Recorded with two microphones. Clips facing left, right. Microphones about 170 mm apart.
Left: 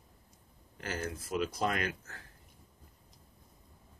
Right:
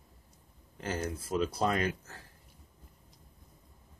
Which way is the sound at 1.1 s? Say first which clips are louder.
Right 2 dB; 30° right (ahead or behind).